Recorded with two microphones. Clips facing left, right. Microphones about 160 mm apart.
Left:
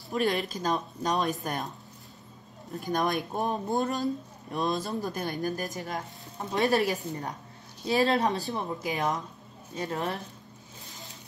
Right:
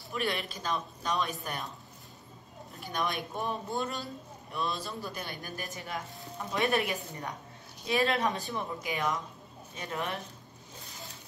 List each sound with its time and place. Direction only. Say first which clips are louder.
0.1 s speech: left 6 dB; 40° left (ahead or behind)
2.7 s speech: left 6 dB; 45° left (ahead or behind)